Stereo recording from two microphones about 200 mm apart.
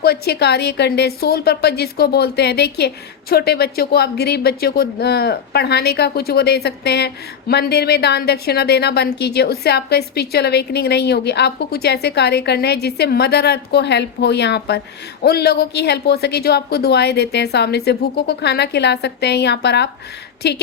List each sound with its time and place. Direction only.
0.0 s a woman's voice: 50° left (ahead or behind)